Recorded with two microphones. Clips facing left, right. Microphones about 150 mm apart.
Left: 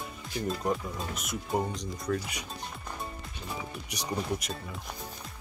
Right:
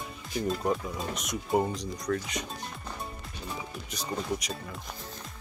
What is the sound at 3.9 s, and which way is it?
Speech, 15° left (ahead or behind).